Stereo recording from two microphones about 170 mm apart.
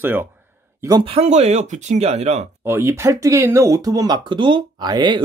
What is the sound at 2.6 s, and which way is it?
Speech, 15° right (ahead or behind).